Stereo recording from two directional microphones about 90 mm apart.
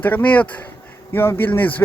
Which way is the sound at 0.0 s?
20° left (ahead or behind).